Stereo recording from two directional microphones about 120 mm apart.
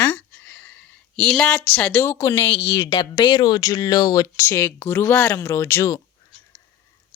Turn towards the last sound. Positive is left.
turn(degrees=25)  # may be behind; listen again after turning